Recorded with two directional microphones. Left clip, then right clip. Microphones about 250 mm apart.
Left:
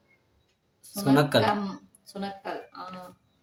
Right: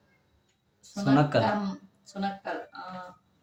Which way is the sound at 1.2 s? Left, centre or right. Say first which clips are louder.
Left 2 dB; left.